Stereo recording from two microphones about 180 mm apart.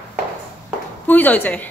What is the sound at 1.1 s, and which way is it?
Speech, 10° left (ahead or behind).